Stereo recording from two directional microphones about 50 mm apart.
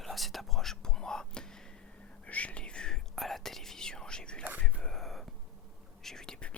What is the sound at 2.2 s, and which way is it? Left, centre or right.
Whispering, left.